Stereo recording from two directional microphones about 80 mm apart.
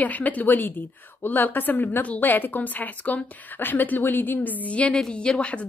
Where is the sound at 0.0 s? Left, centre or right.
Centre.